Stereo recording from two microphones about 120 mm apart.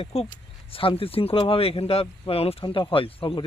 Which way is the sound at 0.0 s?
55° left (ahead or behind).